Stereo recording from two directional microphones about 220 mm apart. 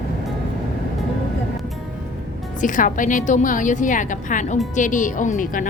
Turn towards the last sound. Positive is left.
turn(degrees=35)  # may be behind; listen again after turning